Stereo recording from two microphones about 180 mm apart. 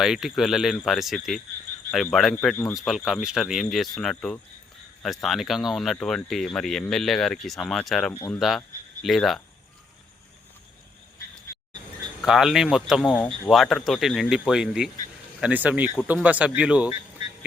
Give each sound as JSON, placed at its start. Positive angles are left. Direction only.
{"t": 0.0, "sound": "speech", "side_deg": 0}
{"t": 8.1, "sound": "speech", "side_deg": 15}
{"t": 8.4, "sound": "speech", "side_deg": 0}
{"t": 12.2, "sound": "speech", "side_deg": 0}